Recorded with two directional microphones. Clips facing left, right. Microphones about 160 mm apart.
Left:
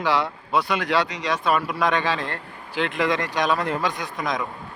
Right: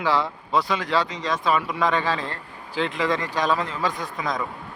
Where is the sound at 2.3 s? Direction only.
65° left (ahead or behind).